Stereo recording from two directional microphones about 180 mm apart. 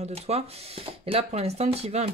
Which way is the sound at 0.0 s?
35° right (ahead or behind).